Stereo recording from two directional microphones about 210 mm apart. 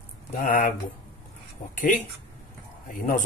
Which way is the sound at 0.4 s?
40° left (ahead or behind).